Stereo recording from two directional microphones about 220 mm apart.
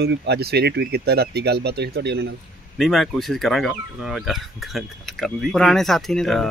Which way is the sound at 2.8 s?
Centre (ahead or behind).